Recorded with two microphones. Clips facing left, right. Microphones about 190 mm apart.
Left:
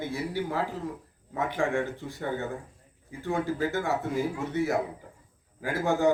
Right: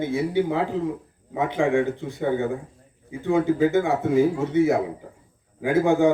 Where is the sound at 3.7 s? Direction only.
20° right (ahead or behind).